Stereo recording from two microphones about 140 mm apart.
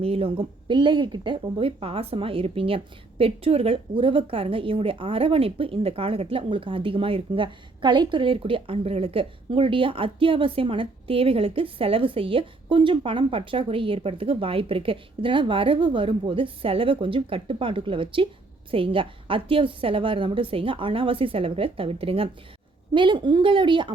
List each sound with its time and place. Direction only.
0.0 s speech: 45° right (ahead or behind)